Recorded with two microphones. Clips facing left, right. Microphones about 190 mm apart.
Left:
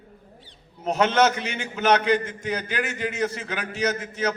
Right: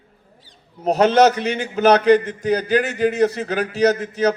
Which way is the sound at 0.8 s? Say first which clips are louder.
Right 6 dB; 35° right (ahead or behind).